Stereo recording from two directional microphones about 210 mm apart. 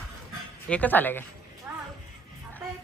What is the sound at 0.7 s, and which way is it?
Speech, 10° left (ahead or behind).